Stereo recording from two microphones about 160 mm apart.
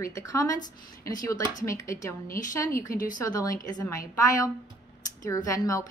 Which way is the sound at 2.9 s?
55° left (ahead or behind).